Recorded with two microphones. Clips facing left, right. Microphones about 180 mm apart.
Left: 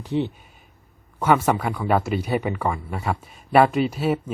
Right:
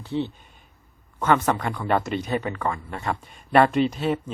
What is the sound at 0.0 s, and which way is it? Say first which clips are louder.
Speech: left 3 dB; 15° left (ahead or behind).